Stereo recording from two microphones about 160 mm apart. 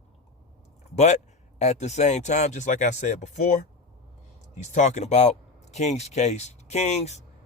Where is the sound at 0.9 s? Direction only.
45° left (ahead or behind).